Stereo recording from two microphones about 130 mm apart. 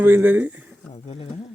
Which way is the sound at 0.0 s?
15° right (ahead or behind).